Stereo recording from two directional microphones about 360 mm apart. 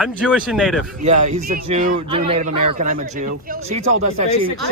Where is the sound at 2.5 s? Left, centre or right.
Right.